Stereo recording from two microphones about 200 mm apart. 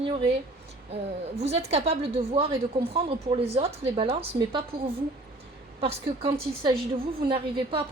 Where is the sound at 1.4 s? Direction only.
30° right (ahead or behind).